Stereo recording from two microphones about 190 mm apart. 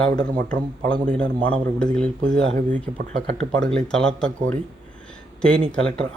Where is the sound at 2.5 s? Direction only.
40° right (ahead or behind).